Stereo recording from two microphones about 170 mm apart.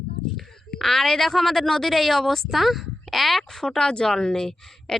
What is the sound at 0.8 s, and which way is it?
Speech, 5° left (ahead or behind).